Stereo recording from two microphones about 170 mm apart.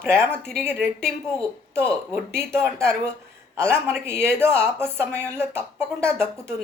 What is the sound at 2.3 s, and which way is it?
Speech, 15° right (ahead or behind).